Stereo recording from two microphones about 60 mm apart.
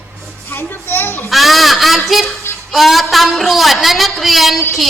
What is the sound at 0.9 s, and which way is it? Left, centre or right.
Children playing, left.